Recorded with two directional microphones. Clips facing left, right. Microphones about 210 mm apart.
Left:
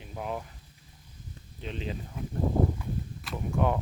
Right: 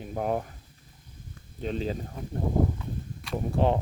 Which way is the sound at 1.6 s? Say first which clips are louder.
Right 6 dB; 40° right (ahead or behind).